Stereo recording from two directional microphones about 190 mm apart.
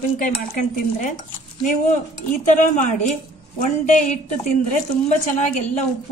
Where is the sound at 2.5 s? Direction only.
40° left (ahead or behind).